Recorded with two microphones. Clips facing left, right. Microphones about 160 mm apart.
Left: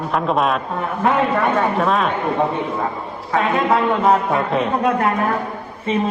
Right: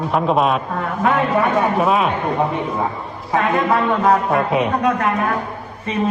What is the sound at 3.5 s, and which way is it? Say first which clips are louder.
Speech: left 2 dB; 20° left (ahead or behind).